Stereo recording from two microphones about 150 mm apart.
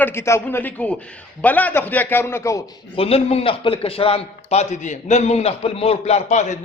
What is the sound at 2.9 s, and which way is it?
A man's voice, 40° left (ahead or behind).